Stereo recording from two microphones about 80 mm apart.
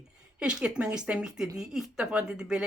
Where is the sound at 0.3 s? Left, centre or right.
Centre.